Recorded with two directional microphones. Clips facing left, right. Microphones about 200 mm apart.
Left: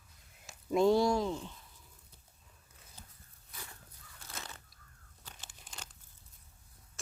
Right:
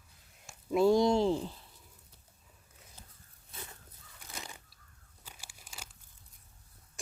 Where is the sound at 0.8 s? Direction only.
20° right (ahead or behind).